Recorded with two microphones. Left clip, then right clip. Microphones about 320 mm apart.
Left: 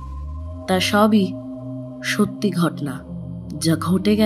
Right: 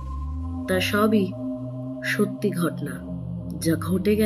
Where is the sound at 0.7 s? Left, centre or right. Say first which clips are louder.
Left 5 dB; left.